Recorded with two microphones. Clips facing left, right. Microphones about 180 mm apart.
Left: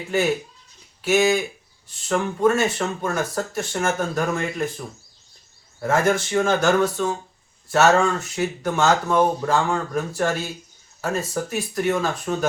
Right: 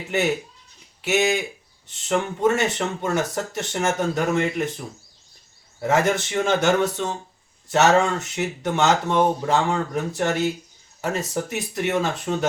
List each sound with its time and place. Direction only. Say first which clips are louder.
1.0 s speech: left 3 dB; 20° right (ahead or behind)
5.8 s speech: even; 20° right (ahead or behind)